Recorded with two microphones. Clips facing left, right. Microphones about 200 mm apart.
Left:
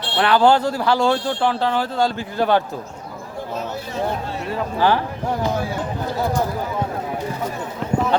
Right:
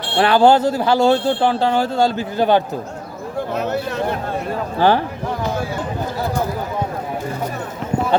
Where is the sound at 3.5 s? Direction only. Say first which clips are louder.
Right 6 dB; 70° right (ahead or behind).